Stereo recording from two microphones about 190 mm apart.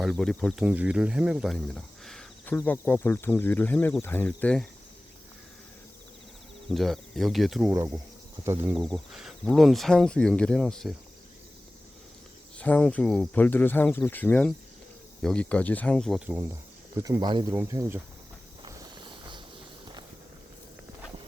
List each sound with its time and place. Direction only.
0.0 s speech: centre (ahead or behind)
6.7 s speech: centre (ahead or behind)
7.7 s speech: 15° right (ahead or behind); by 10.9 s 5° left (ahead or behind)
12.5 s speech: 5° left (ahead or behind); by 16.5 s 10° right (ahead or behind)
17.0 s speech: 20° right (ahead or behind)
18.6 s a sound: 25° right (ahead or behind)